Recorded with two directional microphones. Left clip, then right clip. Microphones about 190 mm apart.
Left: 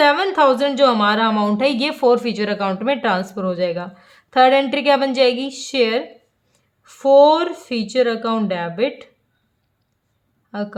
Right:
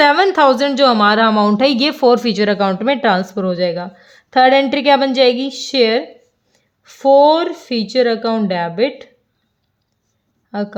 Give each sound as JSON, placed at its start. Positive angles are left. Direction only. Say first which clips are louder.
{"t": 0.0, "sound": "a woman's voice", "louder": "right 4 dB", "side_deg": -40}
{"t": 10.5, "sound": "speech", "louder": "right 4 dB", "side_deg": -25}